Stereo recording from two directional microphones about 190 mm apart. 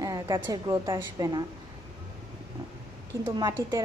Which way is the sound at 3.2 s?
20° right (ahead or behind).